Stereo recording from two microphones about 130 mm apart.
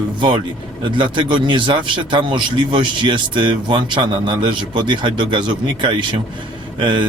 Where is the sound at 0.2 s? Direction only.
40° right (ahead or behind).